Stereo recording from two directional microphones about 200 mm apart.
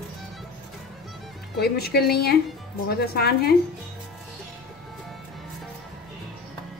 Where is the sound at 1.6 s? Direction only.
50° left (ahead or behind).